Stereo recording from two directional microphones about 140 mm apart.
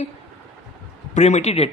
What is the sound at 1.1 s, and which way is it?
Speech, 55° left (ahead or behind).